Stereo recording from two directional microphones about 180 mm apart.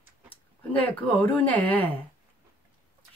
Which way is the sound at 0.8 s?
10° left (ahead or behind).